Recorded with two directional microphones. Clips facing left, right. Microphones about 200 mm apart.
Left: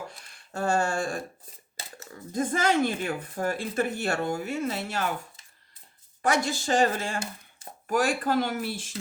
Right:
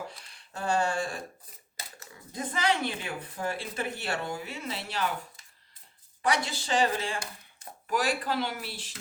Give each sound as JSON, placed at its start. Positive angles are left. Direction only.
{"t": 0.2, "sound": "a sound", "side_deg": 45}
{"t": 2.3, "sound": "speech", "side_deg": 45}
{"t": 6.2, "sound": "speech", "side_deg": 45}